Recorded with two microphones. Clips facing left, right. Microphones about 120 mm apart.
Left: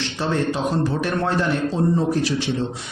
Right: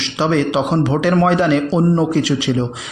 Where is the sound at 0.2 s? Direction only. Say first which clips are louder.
Right 7 dB; 90° right.